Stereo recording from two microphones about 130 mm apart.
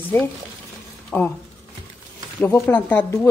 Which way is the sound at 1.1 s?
10° left (ahead or behind).